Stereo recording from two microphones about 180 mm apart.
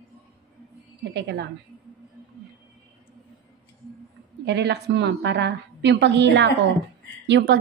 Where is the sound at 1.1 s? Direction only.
65° right (ahead or behind).